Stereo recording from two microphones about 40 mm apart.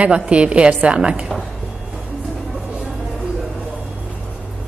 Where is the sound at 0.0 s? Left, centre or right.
Right.